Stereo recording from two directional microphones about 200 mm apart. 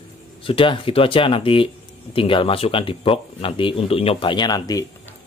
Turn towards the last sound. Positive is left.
turn(degrees=20)  # may be behind; listen again after turning